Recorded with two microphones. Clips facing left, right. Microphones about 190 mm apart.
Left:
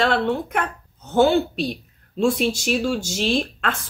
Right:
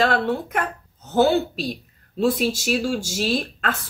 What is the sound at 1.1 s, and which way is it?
Speech, 5° right (ahead or behind).